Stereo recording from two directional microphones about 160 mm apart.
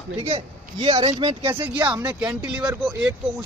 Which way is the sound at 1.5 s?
10° right (ahead or behind).